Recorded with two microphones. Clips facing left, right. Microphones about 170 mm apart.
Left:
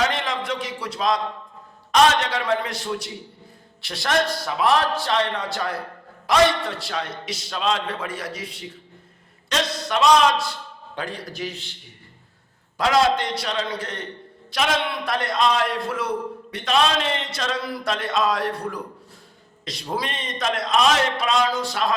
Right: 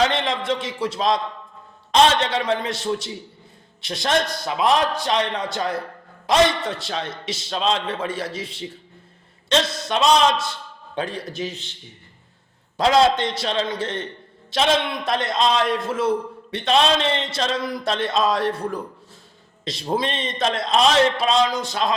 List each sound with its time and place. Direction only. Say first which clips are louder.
0.1 s a man's voice: right 3 dB; 25° right (ahead or behind)
12.7 s a man's voice: right 2 dB; 25° right (ahead or behind)